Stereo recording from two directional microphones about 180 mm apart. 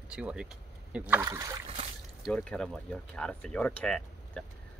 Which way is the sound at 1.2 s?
20° right (ahead or behind).